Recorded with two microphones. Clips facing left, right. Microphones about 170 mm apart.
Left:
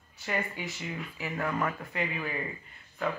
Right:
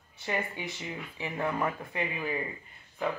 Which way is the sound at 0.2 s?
20° right (ahead or behind).